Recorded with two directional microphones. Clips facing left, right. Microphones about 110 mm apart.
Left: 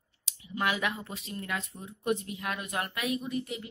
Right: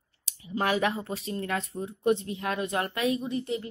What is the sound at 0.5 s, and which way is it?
Speech, 35° right (ahead or behind).